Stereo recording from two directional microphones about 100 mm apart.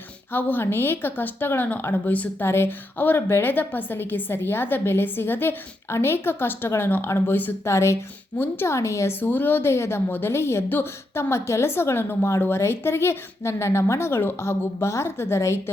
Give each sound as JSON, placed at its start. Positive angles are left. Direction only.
{"t": 0.3, "sound": "a woman's voice", "side_deg": 20}
{"t": 9.2, "sound": "a woman's voice", "side_deg": 20}